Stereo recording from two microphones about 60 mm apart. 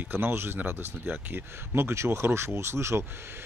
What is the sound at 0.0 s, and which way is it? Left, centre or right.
Speech, right.